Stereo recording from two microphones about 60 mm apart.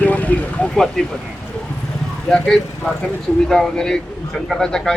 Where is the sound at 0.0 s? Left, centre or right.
Left.